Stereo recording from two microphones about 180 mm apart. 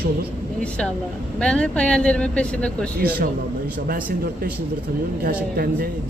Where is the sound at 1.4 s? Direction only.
5° left (ahead or behind).